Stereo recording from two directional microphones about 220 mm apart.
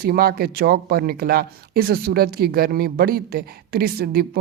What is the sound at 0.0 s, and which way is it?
Speech, 45° right (ahead or behind).